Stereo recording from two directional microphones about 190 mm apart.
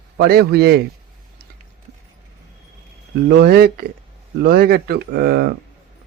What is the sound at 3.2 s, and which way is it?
Speech, 55° right (ahead or behind).